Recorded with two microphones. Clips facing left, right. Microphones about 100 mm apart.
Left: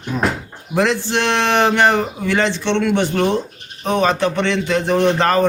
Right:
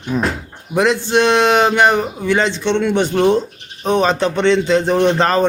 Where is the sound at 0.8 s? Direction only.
15° right (ahead or behind).